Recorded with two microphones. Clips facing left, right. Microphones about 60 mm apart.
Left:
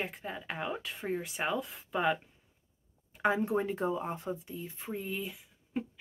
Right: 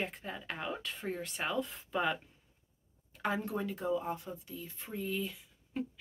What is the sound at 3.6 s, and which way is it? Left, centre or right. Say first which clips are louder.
Speech: left 3 dB; left.